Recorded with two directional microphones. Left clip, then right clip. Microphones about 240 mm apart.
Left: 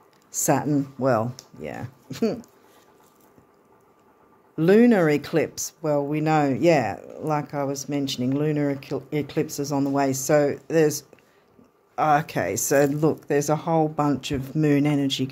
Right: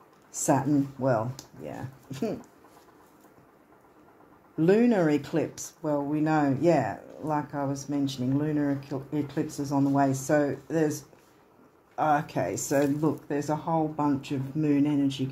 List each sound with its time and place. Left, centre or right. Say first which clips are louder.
0.3 s speech: left 3 dB; left
4.6 s speech: left 5 dB; left